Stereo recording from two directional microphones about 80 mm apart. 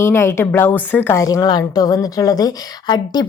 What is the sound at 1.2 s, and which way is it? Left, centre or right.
A woman's voice, left.